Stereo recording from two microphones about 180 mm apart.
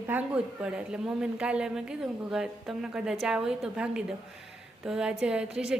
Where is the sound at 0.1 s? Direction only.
10° right (ahead or behind).